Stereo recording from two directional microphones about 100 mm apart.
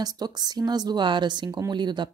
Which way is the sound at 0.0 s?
40° right (ahead or behind).